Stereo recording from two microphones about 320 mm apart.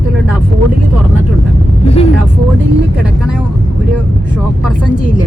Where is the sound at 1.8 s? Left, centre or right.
Centre.